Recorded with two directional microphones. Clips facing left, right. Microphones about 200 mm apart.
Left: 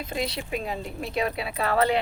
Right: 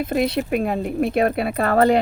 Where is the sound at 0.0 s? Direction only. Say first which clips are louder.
Right 10 dB; 60° right (ahead or behind).